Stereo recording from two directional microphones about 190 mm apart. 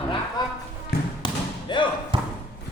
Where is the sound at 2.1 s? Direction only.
25° right (ahead or behind).